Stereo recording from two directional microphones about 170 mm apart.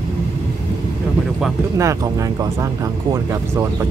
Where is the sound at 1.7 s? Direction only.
20° right (ahead or behind).